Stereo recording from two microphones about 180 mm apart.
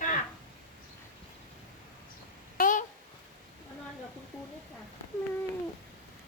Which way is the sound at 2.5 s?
50° left (ahead or behind).